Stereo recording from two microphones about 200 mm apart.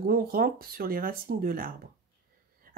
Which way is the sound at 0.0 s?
50° right (ahead or behind).